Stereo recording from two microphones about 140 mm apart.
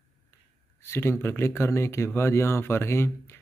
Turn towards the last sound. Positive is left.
turn(degrees=15)  # may be behind; listen again after turning